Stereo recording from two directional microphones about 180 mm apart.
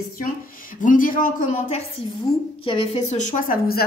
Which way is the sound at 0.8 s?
50° left (ahead or behind).